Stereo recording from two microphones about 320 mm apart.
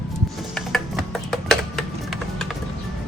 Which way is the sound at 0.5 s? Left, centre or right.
Centre.